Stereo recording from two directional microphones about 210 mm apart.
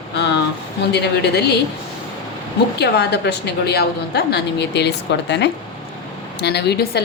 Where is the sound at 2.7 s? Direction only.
50° left (ahead or behind).